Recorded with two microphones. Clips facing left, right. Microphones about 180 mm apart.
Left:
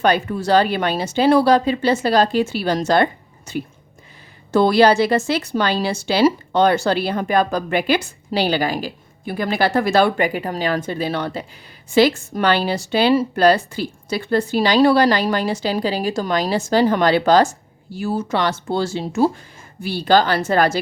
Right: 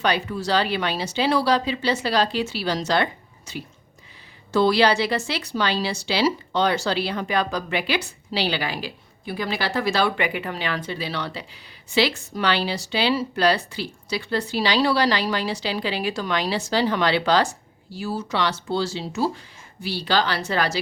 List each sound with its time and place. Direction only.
0.0 s speech: 50° left (ahead or behind)